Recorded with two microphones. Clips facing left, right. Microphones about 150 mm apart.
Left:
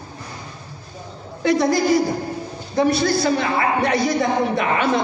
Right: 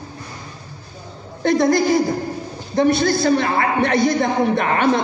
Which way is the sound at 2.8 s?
50° right (ahead or behind).